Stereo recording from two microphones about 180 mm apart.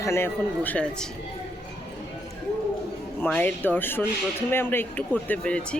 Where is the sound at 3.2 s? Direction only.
10° left (ahead or behind).